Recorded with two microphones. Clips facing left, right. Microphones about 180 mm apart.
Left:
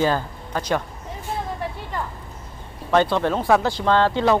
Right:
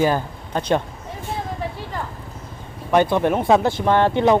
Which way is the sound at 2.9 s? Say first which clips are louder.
Right 2 dB; 15° right (ahead or behind).